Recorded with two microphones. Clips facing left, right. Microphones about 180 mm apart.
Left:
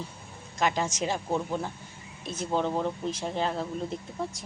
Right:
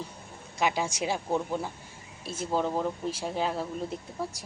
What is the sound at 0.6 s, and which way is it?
A woman's voice, 10° right (ahead or behind).